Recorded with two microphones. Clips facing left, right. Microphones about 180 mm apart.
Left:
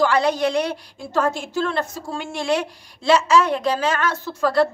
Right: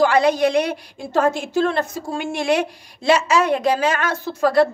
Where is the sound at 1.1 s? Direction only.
55° right (ahead or behind).